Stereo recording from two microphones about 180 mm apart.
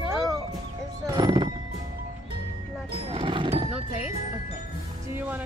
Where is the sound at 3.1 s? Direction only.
30° right (ahead or behind).